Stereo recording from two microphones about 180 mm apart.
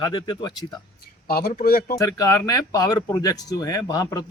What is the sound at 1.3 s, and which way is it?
Speech, 60° left (ahead or behind).